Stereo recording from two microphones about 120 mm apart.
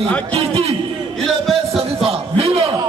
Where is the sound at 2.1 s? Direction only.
55° right (ahead or behind).